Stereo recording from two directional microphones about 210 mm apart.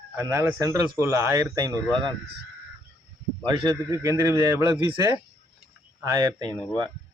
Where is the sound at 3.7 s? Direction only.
15° right (ahead or behind).